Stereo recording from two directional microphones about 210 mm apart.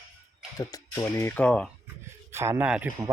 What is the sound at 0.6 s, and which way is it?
Speech, 15° left (ahead or behind).